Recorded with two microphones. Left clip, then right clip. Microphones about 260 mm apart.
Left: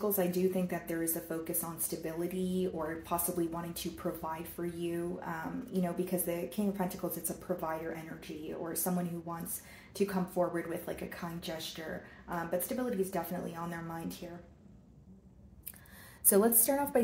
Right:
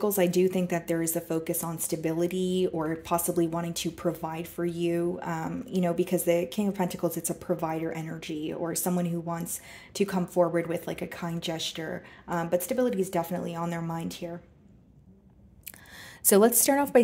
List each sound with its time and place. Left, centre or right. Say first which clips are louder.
0.0 s speech: right 7 dB; right
16.3 s a woman's voice: right 7 dB; right